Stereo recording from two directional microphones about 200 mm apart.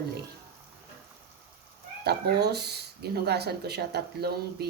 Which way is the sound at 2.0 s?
55° right (ahead or behind).